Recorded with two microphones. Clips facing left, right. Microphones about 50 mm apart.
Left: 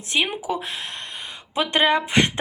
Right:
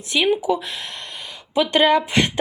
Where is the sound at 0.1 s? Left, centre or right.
Left.